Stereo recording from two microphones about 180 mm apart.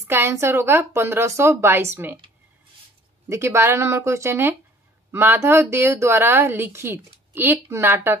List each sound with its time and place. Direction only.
0.0 s speech: 15° right (ahead or behind)
3.3 s speech: 15° right (ahead or behind)